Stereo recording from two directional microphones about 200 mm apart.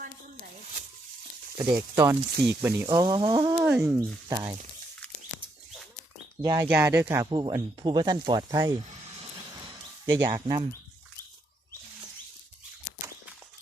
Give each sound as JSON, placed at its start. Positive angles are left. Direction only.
{"t": 1.7, "sound": "speech", "side_deg": -10}
{"t": 3.6, "sound": "speech", "side_deg": -10}
{"t": 6.4, "sound": "speech", "side_deg": -20}
{"t": 7.3, "sound": "speech", "side_deg": -25}
{"t": 10.1, "sound": "speech", "side_deg": -20}